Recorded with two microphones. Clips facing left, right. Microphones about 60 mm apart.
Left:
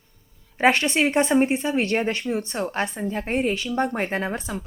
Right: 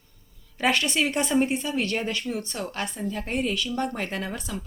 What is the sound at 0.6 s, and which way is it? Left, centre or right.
A woman's voice, left.